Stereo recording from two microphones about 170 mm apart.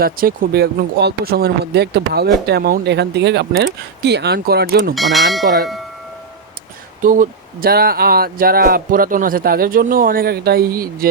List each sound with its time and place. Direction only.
0.0 s speech: 60° right (ahead or behind)
4.9 s speech: centre (ahead or behind)
7.0 s speech: 50° right (ahead or behind)